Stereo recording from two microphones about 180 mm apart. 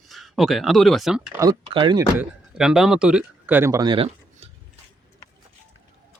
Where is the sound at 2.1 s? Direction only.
5° right (ahead or behind); by 4.4 s 30° right (ahead or behind).